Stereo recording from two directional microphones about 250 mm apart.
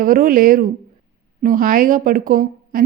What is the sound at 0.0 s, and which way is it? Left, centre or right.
A woman's voice, right.